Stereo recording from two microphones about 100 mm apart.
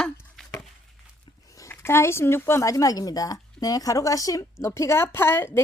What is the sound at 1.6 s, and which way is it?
A woman's voice, 25° left (ahead or behind).